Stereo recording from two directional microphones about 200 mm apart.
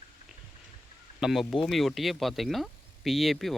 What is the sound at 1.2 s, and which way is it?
Speech, centre (ahead or behind).